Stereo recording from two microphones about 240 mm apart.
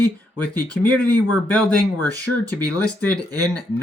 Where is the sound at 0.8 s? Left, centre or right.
Centre.